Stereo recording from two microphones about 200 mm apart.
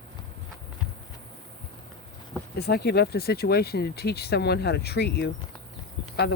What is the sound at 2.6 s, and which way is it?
Speech, 55° left (ahead or behind).